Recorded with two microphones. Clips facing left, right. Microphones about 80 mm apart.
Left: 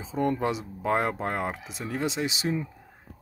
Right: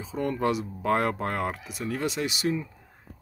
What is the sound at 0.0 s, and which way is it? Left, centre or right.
Speech, left.